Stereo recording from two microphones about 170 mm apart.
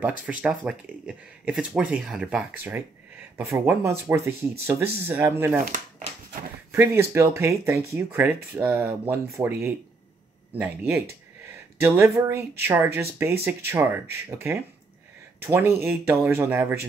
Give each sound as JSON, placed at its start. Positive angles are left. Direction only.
{"t": 0.0, "sound": "speech", "side_deg": -10}
{"t": 6.7, "sound": "speech", "side_deg": -15}